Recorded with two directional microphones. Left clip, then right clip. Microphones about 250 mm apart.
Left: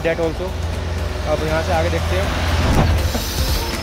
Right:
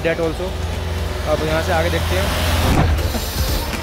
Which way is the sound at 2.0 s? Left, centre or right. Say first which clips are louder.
Right 1 dB; right.